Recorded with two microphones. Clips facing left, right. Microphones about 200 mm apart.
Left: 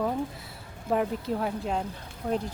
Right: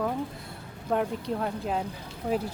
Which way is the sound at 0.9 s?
Centre (ahead or behind).